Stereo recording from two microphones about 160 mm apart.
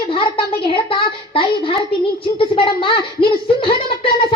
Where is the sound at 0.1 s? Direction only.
35° left (ahead or behind).